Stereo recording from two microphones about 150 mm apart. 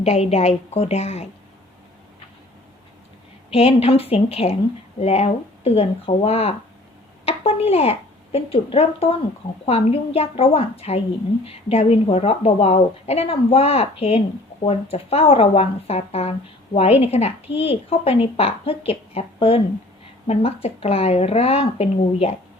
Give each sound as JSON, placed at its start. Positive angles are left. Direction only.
{"t": 0.0, "sound": "a woman's voice", "side_deg": 45}
{"t": 3.5, "sound": "a woman's voice", "side_deg": 40}